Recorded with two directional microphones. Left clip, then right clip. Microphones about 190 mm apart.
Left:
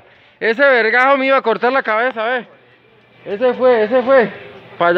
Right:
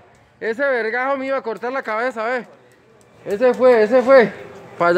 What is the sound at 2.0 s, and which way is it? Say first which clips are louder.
Speech: left 4 dB; 5° left (ahead or behind).